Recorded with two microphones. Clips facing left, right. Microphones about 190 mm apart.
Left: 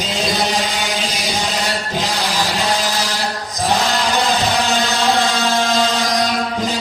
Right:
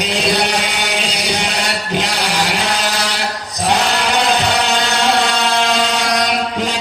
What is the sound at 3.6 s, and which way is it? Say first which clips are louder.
Chant: right 1 dB; 70° right (ahead or behind).